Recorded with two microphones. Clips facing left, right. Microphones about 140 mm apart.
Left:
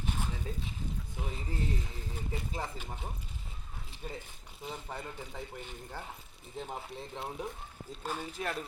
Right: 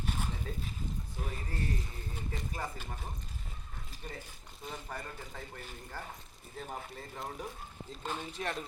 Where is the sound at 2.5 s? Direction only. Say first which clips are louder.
Left 1 dB; 20° left (ahead or behind).